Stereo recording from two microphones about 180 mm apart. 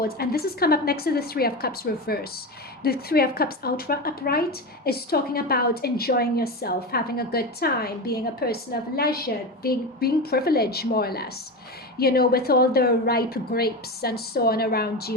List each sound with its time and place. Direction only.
0.0 s a woman's voice: 60° left (ahead or behind)